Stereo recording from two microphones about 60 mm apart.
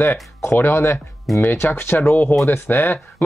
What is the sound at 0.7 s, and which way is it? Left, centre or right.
Speech, left.